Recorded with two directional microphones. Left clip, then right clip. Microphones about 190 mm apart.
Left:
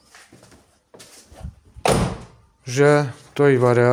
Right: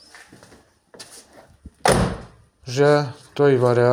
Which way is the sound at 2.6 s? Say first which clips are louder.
Left 1 dB; 30° left (ahead or behind).